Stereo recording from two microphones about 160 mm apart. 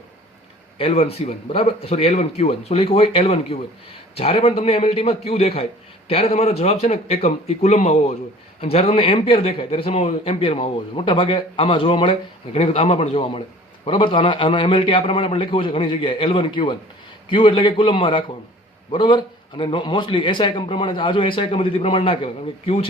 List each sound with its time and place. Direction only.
0.8 s a man's voice: 40° left (ahead or behind)